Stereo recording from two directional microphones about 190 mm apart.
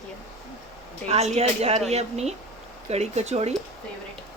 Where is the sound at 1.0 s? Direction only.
35° right (ahead or behind).